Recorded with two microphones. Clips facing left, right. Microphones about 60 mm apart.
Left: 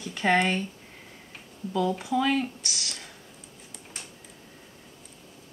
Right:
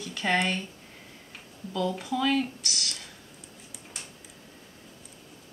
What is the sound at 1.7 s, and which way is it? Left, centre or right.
Speech, centre.